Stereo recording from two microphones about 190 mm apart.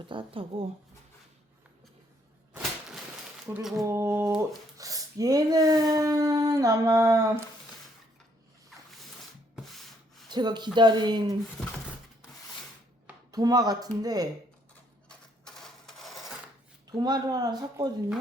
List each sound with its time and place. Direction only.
0.0 s speech: 25° right (ahead or behind)
2.5 s a sound: centre (ahead or behind)
3.8 s a sound: 15° right (ahead or behind)
4.4 s speech: 20° right (ahead or behind)
10.2 s speech: 20° right (ahead or behind)
13.3 s speech: 20° right (ahead or behind)
15.1 s cash register: 5° left (ahead or behind)
16.9 s speech: 20° right (ahead or behind)